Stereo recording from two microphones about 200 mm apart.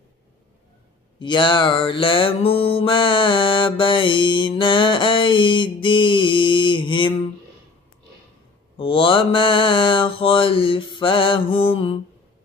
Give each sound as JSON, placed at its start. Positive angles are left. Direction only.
{"t": 1.2, "sound": "mantra", "side_deg": 25}
{"t": 8.7, "sound": "mantra", "side_deg": 25}